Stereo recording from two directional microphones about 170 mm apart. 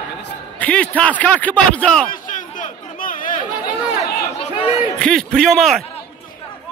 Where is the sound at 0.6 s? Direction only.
5° left (ahead or behind).